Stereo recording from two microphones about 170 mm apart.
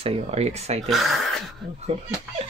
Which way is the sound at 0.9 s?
Centre (ahead or behind).